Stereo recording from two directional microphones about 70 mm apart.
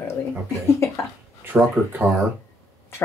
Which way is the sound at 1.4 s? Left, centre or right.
Right.